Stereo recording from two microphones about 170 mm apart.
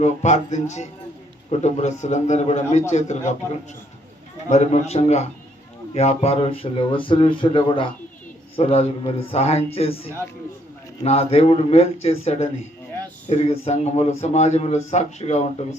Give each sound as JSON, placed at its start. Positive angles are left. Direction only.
{"t": 0.0, "sound": "a man's voice", "side_deg": 40}
{"t": 4.4, "sound": "speech", "side_deg": 40}